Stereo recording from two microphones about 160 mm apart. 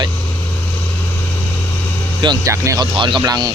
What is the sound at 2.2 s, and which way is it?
Speech, 25° right (ahead or behind).